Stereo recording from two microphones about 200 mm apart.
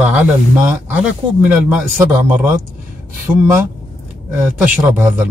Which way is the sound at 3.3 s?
25° right (ahead or behind).